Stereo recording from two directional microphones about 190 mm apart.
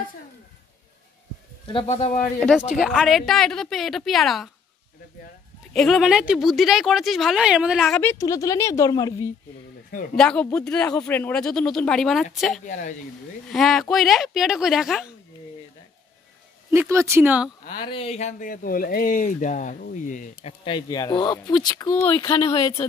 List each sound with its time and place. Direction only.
1.7 s a man's voice: 30° left (ahead or behind)
2.8 s speech: centre (ahead or behind)
5.7 s speech: 5° left (ahead or behind)
10.1 s speech: 5° left (ahead or behind)
12.6 s a man's voice: 40° left (ahead or behind)
13.5 s speech: centre (ahead or behind)
16.7 s speech: 15° right (ahead or behind)
17.8 s speech: 30° left (ahead or behind)
20.6 s speech: 20° left (ahead or behind)